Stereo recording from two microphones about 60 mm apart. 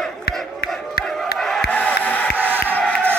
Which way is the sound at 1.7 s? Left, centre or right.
Left.